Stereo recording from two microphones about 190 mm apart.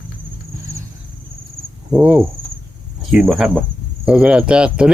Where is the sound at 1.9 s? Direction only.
5° right (ahead or behind).